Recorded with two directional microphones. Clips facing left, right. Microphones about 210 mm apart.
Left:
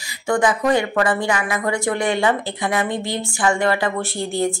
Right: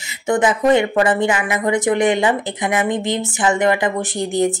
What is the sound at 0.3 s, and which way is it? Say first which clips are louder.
Speech: right 3 dB; 20° right (ahead or behind).